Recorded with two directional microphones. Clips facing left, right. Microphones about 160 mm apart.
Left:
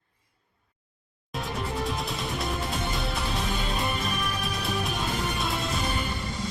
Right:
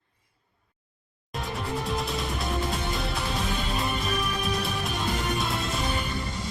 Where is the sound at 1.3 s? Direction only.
Centre (ahead or behind).